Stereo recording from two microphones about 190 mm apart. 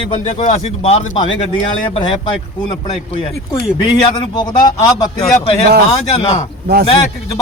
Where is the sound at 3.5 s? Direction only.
20° left (ahead or behind).